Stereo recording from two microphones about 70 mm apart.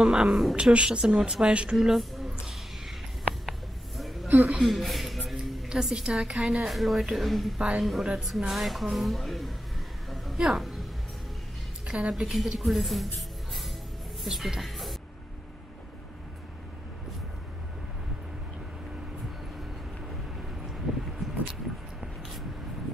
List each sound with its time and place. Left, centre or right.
0.0 s a woman's voice: centre
0.6 s a woman's voice: centre
1.8 s a woman's voice: centre
3.4 s a sound: centre
4.3 s a woman's voice: centre
4.6 s a sound: centre
5.7 s a woman's voice: centre
10.0 s a sound: centre
10.4 s speech: centre
11.9 s speech: centre
14.2 s speech: centre